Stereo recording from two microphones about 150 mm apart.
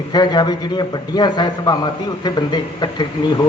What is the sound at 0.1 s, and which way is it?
A man's voice, 30° left (ahead or behind).